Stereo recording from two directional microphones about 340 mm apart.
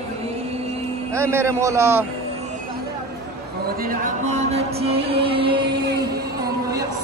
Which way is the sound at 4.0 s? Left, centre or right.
Centre.